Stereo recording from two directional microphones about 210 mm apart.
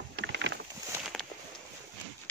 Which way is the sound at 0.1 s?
60° right (ahead or behind).